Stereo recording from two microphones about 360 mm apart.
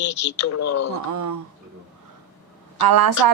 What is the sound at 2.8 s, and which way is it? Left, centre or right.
Speech, right.